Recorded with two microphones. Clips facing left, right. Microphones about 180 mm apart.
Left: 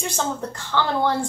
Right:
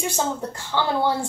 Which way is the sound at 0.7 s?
15° right (ahead or behind).